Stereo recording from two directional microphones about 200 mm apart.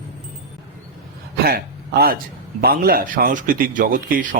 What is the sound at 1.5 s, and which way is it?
A man's voice, 50° right (ahead or behind).